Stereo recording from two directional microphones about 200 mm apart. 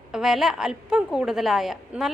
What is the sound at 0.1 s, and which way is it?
A woman's voice, centre (ahead or behind).